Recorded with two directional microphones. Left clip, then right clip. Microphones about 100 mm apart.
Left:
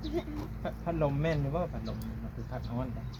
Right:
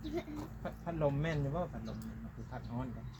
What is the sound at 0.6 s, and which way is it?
Speech, 35° right (ahead or behind).